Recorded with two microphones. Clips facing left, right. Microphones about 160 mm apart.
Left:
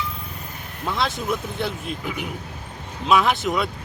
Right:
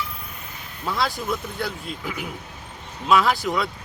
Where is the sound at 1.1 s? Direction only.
25° left (ahead or behind).